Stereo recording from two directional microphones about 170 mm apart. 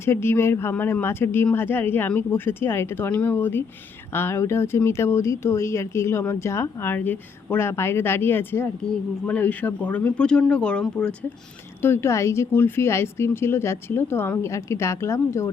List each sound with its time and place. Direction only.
0.0 s speech: 15° left (ahead or behind)